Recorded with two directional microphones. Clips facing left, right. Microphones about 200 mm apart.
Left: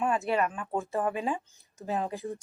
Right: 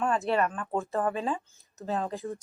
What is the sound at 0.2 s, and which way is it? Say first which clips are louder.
Speech: right 1 dB; centre (ahead or behind).